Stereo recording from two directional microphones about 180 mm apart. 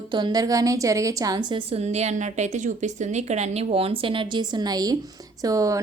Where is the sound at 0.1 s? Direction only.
25° right (ahead or behind).